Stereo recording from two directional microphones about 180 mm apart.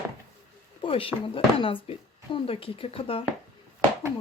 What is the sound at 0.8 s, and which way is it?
Speech, 30° left (ahead or behind).